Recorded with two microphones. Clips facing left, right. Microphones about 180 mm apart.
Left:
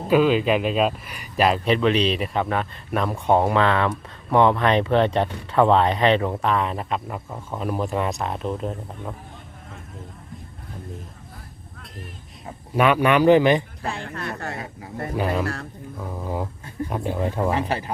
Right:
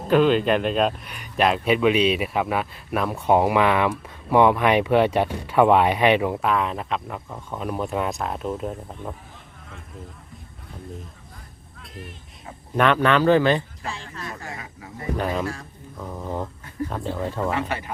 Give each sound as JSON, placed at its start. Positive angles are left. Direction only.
{"t": 0.1, "sound": "speech", "side_deg": 5}
{"t": 12.7, "sound": "speech", "side_deg": 10}
{"t": 13.8, "sound": "speech", "side_deg": 60}
{"t": 14.6, "sound": "speech", "side_deg": 30}
{"t": 15.2, "sound": "speech", "side_deg": 0}
{"t": 17.5, "sound": "speech", "side_deg": 30}